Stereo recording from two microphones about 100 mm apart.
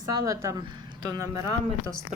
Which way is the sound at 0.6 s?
50° right (ahead or behind).